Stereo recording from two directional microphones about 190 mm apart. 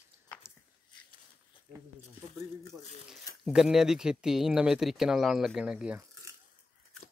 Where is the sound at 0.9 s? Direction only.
25° left (ahead or behind).